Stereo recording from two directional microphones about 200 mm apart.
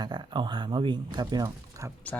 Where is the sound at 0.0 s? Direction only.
20° right (ahead or behind).